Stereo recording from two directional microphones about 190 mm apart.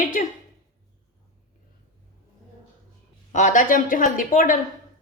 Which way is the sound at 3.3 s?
40° left (ahead or behind).